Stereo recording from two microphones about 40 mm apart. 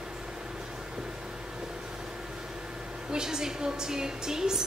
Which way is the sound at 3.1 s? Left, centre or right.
Centre.